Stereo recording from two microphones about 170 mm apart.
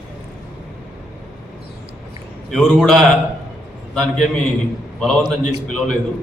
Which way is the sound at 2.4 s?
5° left (ahead or behind).